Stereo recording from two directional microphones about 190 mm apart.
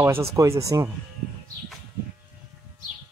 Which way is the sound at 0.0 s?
10° right (ahead or behind).